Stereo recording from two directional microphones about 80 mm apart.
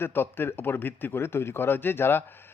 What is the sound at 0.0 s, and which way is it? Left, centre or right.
Speech, left.